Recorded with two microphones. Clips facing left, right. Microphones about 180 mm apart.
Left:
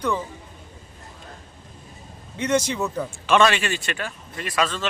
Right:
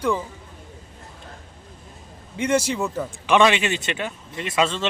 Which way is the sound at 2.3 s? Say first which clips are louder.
Right 1 dB; 10° right (ahead or behind).